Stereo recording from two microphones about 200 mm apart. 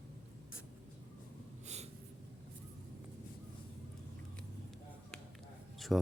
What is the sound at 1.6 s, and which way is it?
Snort, 35° right (ahead or behind).